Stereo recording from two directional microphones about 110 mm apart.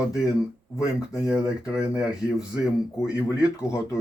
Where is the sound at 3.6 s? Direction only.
25° left (ahead or behind).